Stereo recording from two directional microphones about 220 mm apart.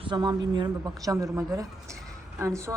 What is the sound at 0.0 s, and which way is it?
A woman's voice, 20° right (ahead or behind).